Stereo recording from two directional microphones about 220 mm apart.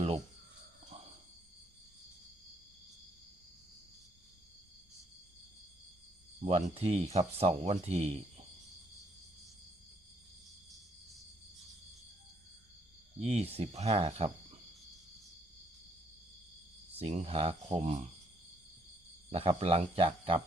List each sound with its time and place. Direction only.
6.4 s speech: 25° right (ahead or behind)
13.2 s speech: 30° right (ahead or behind)
17.0 s speech: 30° right (ahead or behind)
19.3 s speech: 25° right (ahead or behind)